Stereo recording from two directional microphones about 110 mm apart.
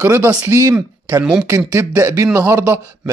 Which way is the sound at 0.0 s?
20° right (ahead or behind).